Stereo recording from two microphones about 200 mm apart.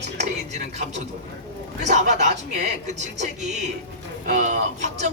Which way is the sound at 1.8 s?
35° right (ahead or behind).